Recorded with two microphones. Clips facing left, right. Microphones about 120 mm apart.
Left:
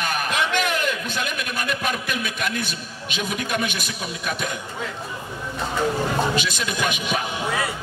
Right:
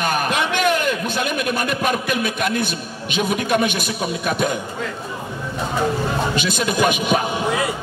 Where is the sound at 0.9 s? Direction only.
55° right (ahead or behind).